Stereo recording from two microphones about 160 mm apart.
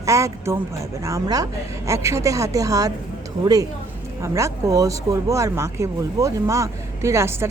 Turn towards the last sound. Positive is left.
turn(degrees=-15)  # may be behind; listen again after turning